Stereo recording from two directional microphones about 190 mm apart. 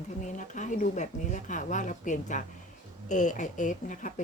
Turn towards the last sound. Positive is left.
turn(degrees=40)  # may be behind; listen again after turning